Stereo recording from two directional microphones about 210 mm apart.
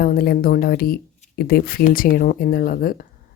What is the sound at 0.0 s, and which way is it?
A woman's voice, 45° left (ahead or behind).